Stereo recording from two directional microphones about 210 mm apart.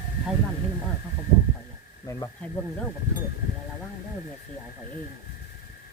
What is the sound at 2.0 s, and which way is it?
Speech, 15° left (ahead or behind).